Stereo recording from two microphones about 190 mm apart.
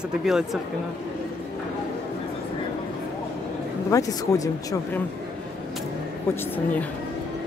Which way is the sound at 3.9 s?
15° left (ahead or behind).